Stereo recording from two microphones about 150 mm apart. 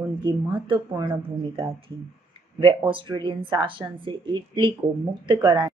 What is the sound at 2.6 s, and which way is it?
Speech, 35° right (ahead or behind).